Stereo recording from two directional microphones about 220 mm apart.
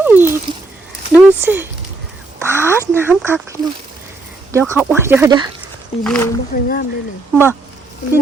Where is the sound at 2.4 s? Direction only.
10° right (ahead or behind).